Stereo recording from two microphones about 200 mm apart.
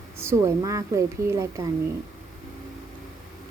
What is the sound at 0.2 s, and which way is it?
A woman's voice, 15° right (ahead or behind).